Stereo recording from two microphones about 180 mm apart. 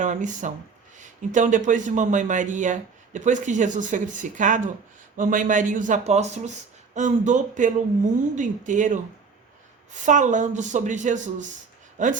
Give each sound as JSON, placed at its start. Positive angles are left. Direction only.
{"t": 0.0, "sound": "a man's voice", "side_deg": -45}
{"t": 10.1, "sound": "a man's voice", "side_deg": -45}